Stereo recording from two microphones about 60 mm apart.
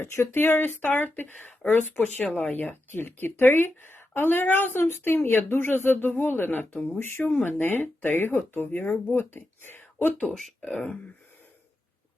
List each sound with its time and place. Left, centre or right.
0.0 s speech: left
0.3 s a woman's voice: left
2.9 s a woman's voice: left